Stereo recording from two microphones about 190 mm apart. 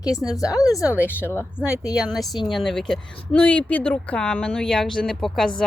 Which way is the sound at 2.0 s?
Centre (ahead or behind).